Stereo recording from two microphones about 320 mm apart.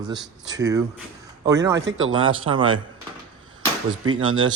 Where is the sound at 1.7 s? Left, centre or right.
Right.